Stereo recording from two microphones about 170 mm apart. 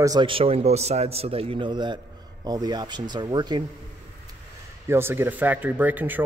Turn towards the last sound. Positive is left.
turn(degrees=-10)  # may be behind; listen again after turning